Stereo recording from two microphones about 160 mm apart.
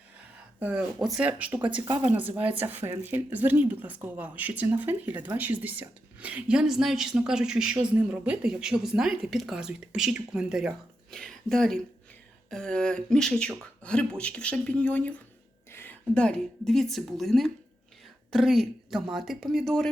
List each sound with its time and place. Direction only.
0.2 s speech: 10° right (ahead or behind)
1.8 s speech: 25° right (ahead or behind)
2.0 s a woman's voice: 10° right (ahead or behind)